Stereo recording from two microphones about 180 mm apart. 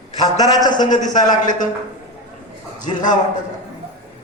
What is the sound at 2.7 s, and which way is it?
Speech, 45° left (ahead or behind).